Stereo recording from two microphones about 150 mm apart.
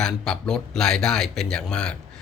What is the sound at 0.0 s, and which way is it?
Speech, 5° left (ahead or behind).